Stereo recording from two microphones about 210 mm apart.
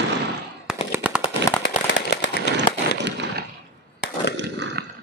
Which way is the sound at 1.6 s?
55° left (ahead or behind).